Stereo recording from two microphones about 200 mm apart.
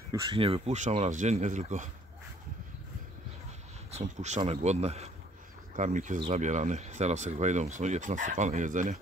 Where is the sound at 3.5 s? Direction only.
35° right (ahead or behind).